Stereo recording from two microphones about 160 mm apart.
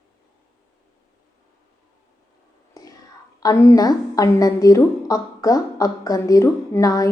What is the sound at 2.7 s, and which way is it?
Whispering, 20° left (ahead or behind).